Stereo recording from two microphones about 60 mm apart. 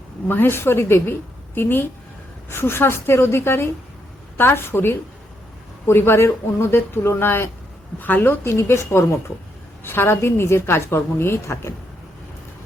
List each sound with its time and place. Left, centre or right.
0.3 s a woman's voice: left